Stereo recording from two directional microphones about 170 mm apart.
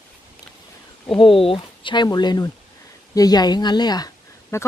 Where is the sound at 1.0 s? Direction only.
30° left (ahead or behind).